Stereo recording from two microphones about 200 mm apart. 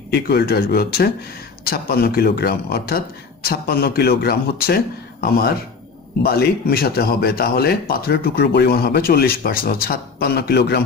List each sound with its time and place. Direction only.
0.1 s speech: 55° left (ahead or behind)